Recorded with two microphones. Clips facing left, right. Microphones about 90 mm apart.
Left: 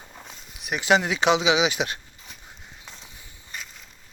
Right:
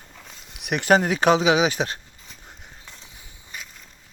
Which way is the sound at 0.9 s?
40° right (ahead or behind).